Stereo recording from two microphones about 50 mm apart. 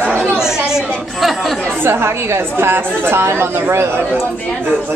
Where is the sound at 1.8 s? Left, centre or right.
Right.